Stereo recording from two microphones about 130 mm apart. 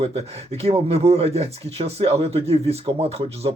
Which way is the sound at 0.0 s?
50° right (ahead or behind).